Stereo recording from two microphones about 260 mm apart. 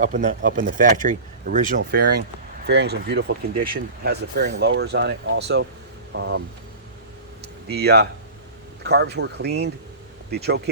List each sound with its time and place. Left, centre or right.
0.0 s speech: right
7.4 s a sound: right
8.8 s speech: right